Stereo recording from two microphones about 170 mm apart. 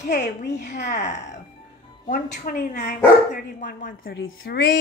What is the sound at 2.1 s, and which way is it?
Speech, 50° left (ahead or behind).